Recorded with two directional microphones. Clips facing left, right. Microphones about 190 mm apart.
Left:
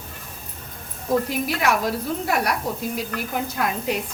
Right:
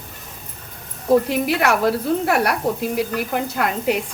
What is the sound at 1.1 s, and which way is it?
A woman's voice, 70° right (ahead or behind).